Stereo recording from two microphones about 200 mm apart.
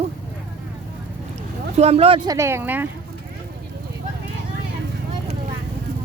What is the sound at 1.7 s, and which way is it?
Speech, 30° right (ahead or behind).